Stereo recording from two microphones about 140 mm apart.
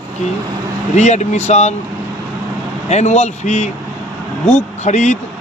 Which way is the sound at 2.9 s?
55° left (ahead or behind).